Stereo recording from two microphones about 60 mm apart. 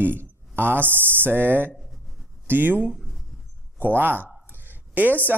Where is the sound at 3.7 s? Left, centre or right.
Right.